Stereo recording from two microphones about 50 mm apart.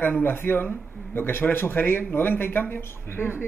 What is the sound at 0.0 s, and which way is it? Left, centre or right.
A man's voice, left.